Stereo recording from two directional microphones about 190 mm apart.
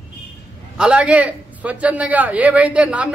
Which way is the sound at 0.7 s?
5° right (ahead or behind).